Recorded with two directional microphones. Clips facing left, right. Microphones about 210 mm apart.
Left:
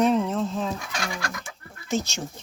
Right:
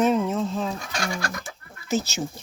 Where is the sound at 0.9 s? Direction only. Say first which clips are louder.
Right 2 dB; 35° right (ahead or behind).